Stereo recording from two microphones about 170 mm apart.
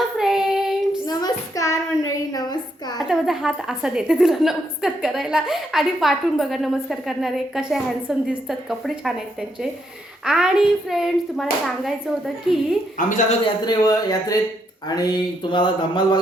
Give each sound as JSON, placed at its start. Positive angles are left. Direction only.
{"t": 0.2, "sound": "child singing", "side_deg": -5}
{"t": 1.0, "sound": "child singing", "side_deg": 20}
{"t": 3.0, "sound": "a woman's voice", "side_deg": 0}
{"t": 13.0, "sound": "a woman's voice", "side_deg": 50}
{"t": 13.4, "sound": "speech", "side_deg": 25}